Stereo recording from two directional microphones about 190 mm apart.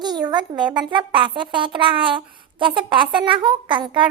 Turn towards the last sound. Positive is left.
turn(degrees=-25)  # may be behind; listen again after turning